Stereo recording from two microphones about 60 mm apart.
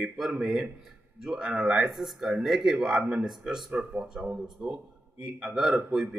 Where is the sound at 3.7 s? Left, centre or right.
Right.